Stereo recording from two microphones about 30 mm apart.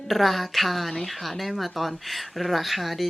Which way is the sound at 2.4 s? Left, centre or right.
Centre.